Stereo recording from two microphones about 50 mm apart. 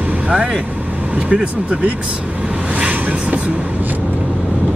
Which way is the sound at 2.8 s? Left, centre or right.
Right.